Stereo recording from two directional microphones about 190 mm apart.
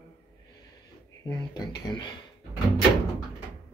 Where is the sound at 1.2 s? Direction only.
20° left (ahead or behind).